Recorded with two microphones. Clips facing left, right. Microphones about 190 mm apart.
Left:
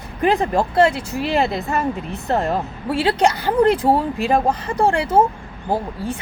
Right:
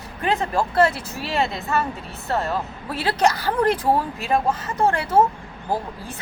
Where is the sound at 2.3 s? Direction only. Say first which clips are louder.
Left 4 dB; 30° left (ahead or behind).